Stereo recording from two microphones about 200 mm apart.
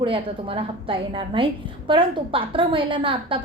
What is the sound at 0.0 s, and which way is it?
A woman's voice, 25° right (ahead or behind).